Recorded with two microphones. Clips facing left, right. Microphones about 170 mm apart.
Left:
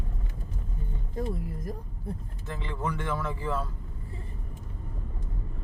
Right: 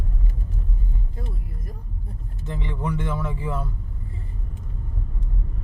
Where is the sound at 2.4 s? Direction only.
20° right (ahead or behind).